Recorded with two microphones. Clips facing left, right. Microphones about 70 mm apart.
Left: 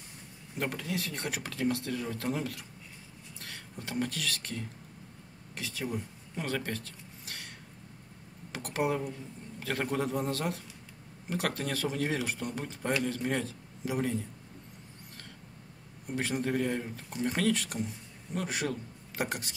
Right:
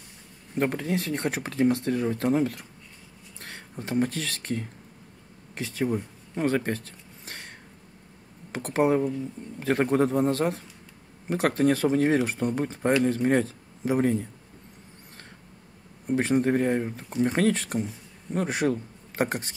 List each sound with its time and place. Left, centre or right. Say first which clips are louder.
0.6 s speech: right 8 dB; right
6.3 s a sound: right 9 dB; right
8.5 s a man's voice: right 8 dB; right
16.1 s speech: right 9 dB; right